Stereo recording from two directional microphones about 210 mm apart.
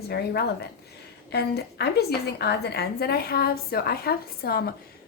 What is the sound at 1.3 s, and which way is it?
A woman's voice, 50° left (ahead or behind).